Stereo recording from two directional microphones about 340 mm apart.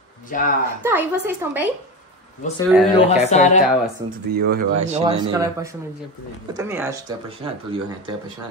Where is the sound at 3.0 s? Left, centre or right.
Centre.